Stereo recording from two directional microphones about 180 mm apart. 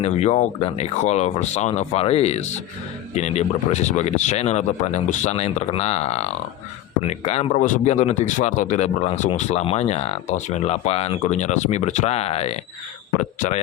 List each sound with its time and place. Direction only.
0.0 s a man's voice: 40° left (ahead or behind)